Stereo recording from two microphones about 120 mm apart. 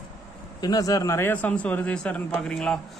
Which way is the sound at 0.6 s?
30° left (ahead or behind).